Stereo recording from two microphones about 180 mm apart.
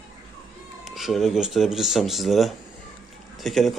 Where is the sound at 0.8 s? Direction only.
Centre (ahead or behind).